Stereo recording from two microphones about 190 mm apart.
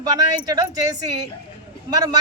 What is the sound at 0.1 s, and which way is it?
Speech, 20° right (ahead or behind).